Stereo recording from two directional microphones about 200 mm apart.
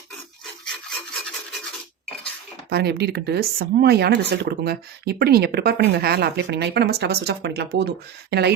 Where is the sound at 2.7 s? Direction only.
55° right (ahead or behind).